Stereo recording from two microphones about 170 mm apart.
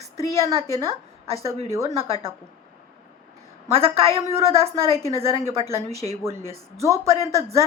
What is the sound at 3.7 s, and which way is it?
A woman's voice, 35° right (ahead or behind).